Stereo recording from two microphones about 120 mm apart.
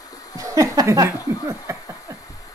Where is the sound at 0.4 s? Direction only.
30° right (ahead or behind).